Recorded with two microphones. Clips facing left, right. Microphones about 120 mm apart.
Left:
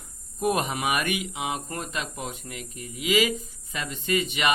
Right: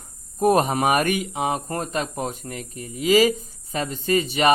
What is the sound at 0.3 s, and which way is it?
Speech, 40° right (ahead or behind).